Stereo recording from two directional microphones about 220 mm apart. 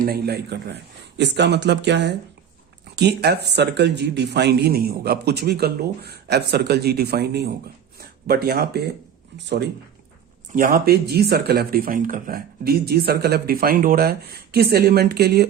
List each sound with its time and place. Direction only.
0.0 s speech: 45° right (ahead or behind)
10.5 s speech: 40° right (ahead or behind)